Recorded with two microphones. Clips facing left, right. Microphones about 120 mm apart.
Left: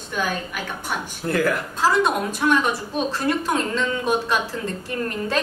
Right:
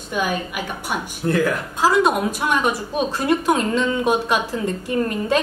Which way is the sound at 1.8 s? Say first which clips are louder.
Right 3 dB; 15° right (ahead or behind).